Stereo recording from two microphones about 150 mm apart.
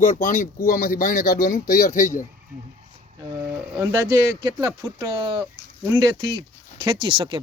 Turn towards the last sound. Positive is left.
turn(degrees=-35)  # may be behind; listen again after turning